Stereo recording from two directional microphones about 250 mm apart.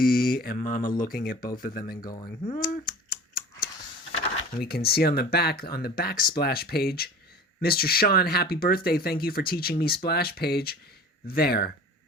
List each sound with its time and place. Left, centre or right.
0.0 s speech: left
2.0 s speech: centre
2.6 s a sound: left
4.2 s speech: left